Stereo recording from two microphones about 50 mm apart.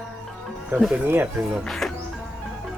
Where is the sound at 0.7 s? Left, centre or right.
Right.